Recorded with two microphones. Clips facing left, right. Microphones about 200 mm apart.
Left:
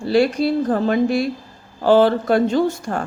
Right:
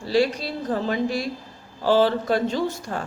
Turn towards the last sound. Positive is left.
turn(degrees=50)  # may be behind; listen again after turning